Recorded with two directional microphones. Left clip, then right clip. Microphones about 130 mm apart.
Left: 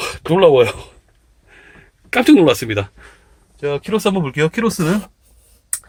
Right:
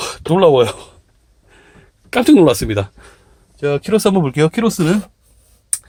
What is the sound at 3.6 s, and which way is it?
Speech, 55° right (ahead or behind).